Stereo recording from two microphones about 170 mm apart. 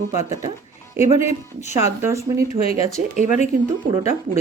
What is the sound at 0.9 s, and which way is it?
Speech, 15° right (ahead or behind).